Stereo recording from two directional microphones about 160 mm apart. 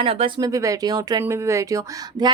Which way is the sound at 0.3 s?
20° right (ahead or behind).